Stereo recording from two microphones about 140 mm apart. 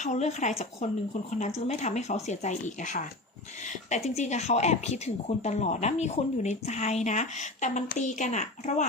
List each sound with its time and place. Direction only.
0.0 s speech: 55° left (ahead or behind)